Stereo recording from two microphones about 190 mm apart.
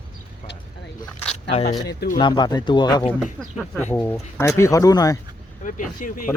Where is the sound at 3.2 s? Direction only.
Centre (ahead or behind); by 5.1 s 20° left (ahead or behind).